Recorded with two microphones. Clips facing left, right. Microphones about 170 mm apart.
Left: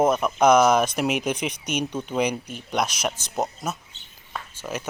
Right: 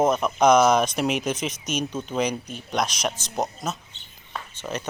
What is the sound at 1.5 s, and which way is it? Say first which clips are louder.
Speech: left 1 dB; 60° left (ahead or behind).